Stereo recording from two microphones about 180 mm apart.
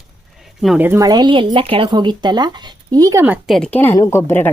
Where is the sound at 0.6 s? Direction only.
Centre (ahead or behind).